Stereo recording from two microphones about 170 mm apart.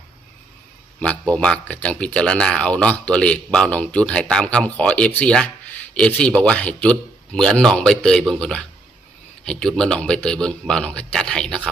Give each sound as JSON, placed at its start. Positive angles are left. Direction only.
{"t": 1.3, "sound": "speech", "side_deg": 5}